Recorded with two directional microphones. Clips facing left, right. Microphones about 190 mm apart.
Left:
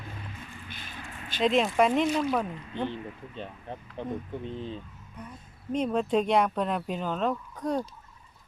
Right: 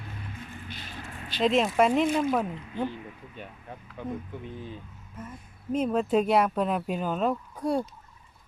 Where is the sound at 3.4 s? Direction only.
25° left (ahead or behind).